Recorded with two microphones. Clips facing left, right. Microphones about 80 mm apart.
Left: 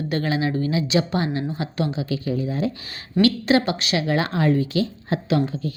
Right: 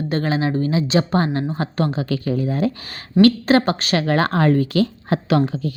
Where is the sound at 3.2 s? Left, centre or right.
Right.